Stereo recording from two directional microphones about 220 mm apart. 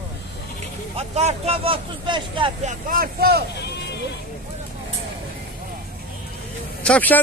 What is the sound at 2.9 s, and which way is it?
Speech, 40° right (ahead or behind).